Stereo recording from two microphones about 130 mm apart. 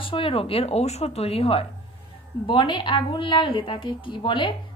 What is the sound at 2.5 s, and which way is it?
A woman's voice, 35° left (ahead or behind).